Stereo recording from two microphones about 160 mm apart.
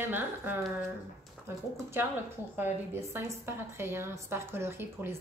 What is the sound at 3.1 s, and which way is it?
A woman's voice, 15° right (ahead or behind).